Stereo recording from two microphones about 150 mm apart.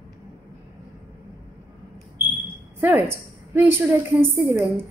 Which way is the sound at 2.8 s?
15° right (ahead or behind).